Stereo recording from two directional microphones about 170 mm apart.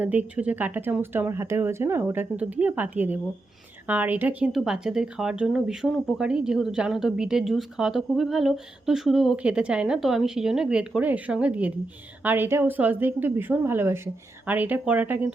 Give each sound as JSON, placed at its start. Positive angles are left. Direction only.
{"t": 0.0, "sound": "speech", "side_deg": -10}